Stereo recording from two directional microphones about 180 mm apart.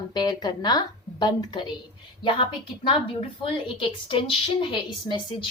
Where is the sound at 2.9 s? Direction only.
30° left (ahead or behind).